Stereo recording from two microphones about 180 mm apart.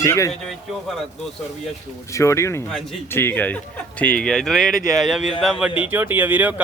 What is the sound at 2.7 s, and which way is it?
Speech, centre (ahead or behind).